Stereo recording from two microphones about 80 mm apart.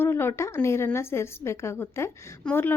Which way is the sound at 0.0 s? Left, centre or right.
Left.